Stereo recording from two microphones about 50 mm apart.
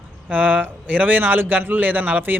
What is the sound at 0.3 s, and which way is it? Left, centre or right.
A man's voice, right.